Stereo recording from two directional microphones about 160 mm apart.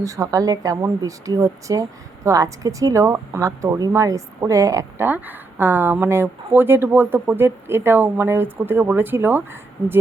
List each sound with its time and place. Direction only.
0.0 s speech: 20° right (ahead or behind)